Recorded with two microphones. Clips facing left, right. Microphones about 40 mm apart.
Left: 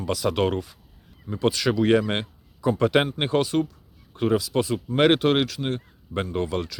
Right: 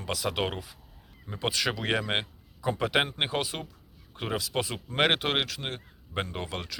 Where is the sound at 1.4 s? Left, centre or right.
Right; by 3.4 s centre.